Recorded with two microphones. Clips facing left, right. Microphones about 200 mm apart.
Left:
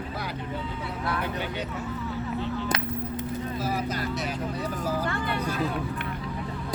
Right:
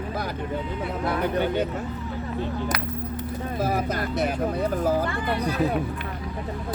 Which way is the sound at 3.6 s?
55° right (ahead or behind).